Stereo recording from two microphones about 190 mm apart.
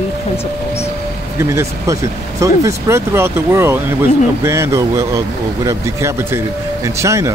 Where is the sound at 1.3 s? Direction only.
15° right (ahead or behind).